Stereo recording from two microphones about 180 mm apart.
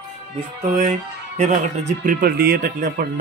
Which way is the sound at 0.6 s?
40° right (ahead or behind).